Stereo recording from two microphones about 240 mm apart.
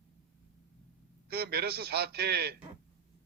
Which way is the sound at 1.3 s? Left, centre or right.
Right.